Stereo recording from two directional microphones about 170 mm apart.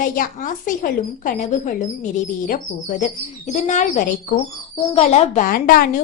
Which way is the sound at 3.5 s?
45° left (ahead or behind).